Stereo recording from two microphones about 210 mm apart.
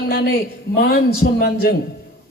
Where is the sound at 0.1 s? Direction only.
45° left (ahead or behind).